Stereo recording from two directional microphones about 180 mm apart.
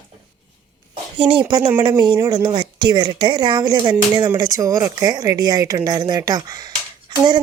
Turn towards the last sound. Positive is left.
turn(degrees=-25)  # may be behind; listen again after turning